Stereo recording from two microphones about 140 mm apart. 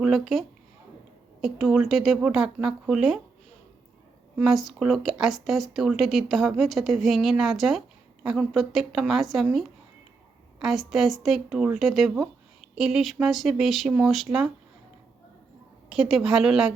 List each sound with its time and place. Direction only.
0.0 s speech: centre (ahead or behind)
4.4 s speech: centre (ahead or behind)
15.9 s speech: 5° right (ahead or behind)